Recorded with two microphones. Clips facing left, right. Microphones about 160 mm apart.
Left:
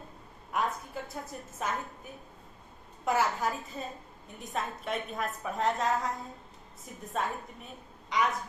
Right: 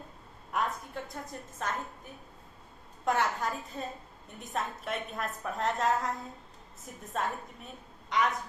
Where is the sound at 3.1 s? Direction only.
5° left (ahead or behind).